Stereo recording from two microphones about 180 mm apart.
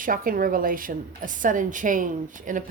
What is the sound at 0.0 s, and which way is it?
Speech, 50° right (ahead or behind).